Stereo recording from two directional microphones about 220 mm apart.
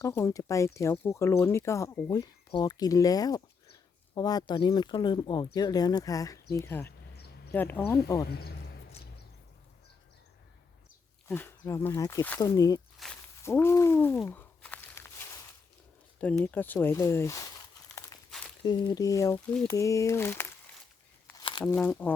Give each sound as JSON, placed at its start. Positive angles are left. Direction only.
{"t": 0.0, "sound": "speech", "side_deg": 10}
{"t": 8.3, "sound": "a man's voice", "side_deg": 45}
{"t": 11.3, "sound": "speech", "side_deg": 10}
{"t": 13.0, "sound": "speech", "side_deg": 0}
{"t": 13.4, "sound": "a sound", "side_deg": 10}
{"t": 16.2, "sound": "speech", "side_deg": 5}
{"t": 18.3, "sound": "walk", "side_deg": 0}
{"t": 18.6, "sound": "speech", "side_deg": 20}
{"t": 21.6, "sound": "speech", "side_deg": 5}